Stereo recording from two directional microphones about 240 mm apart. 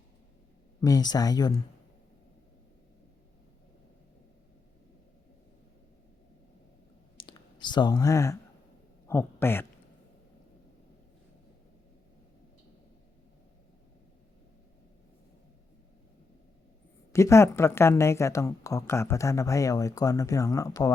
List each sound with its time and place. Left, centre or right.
0.8 s speech: centre
7.2 s clicking: centre
9.0 s a man's voice: centre
17.1 s speech: centre